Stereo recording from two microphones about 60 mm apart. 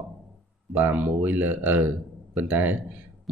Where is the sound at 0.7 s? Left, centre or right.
Right.